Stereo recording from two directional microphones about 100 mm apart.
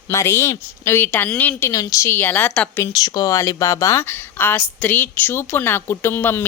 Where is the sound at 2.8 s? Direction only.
35° left (ahead or behind).